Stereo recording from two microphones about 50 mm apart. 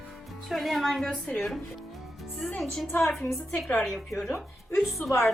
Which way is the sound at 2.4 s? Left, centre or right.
Centre.